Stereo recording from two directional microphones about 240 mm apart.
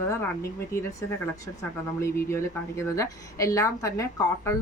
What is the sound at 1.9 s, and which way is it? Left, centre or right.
A woman's voice, centre.